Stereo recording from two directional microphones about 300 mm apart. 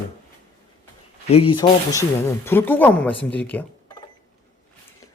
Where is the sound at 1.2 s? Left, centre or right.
Centre.